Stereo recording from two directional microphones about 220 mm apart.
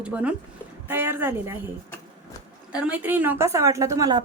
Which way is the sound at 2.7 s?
5° right (ahead or behind).